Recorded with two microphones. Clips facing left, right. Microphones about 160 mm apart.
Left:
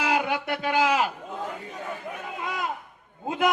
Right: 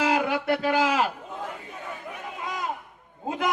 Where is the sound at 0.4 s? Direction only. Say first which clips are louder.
Right 1 dB; 40° right (ahead or behind).